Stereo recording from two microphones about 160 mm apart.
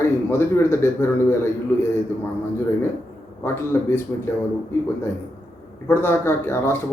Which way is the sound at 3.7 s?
15° left (ahead or behind).